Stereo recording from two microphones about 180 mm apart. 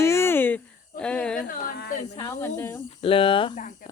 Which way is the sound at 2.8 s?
30° left (ahead or behind).